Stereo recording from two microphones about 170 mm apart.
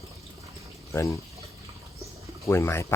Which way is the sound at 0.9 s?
20° left (ahead or behind).